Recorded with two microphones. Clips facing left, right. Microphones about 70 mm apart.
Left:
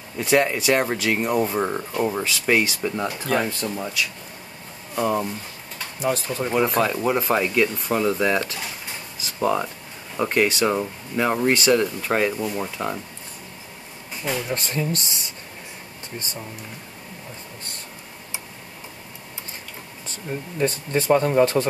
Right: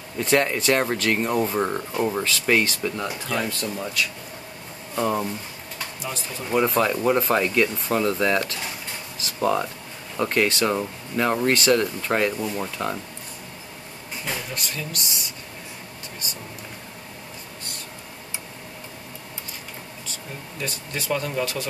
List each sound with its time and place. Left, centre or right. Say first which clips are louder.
0.2 s speech: left 1 dB; centre; by 3.7 s left
3.7 s speech: even; centre
5.9 s speech: left 12 dB; left
6.5 s speech: right 1 dB; centre
14.5 s speech: left 6 dB; left
20.5 s speech: left 9 dB; left